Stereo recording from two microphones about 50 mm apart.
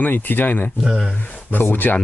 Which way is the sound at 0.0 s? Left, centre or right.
Left.